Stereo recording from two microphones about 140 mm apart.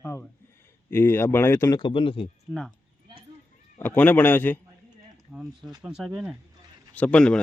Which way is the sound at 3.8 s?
15° left (ahead or behind).